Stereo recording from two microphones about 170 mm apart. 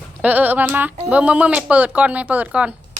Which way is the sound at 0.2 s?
10° right (ahead or behind).